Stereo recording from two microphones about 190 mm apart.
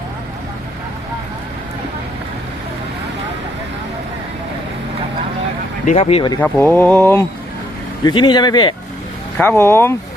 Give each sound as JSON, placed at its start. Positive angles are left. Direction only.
{"t": 5.8, "sound": "speech", "side_deg": 35}
{"t": 6.4, "sound": "speech", "side_deg": 10}
{"t": 8.0, "sound": "speech", "side_deg": 25}
{"t": 9.4, "sound": "speech", "side_deg": 10}